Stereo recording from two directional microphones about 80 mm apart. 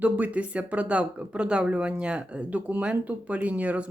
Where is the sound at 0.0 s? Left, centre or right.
Centre.